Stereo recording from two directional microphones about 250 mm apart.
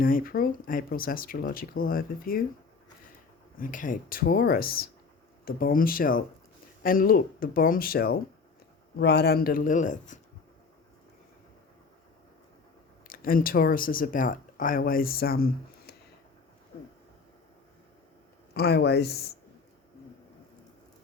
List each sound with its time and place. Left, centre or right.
0.0 s speech: left
3.6 s speech: left
13.1 s speech: left
18.5 s speech: left